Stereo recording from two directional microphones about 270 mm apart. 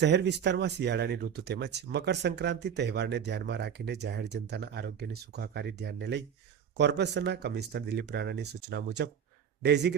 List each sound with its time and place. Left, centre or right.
0.0 s speech: right